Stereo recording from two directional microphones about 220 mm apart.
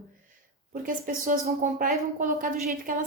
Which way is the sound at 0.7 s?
35° right (ahead or behind).